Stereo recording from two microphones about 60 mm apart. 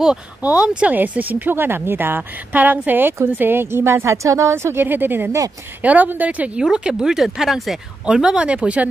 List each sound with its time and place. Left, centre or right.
0.4 s a woman's voice: right
4.8 s a woman's voice: right
6.6 s speech: centre
8.1 s speech: centre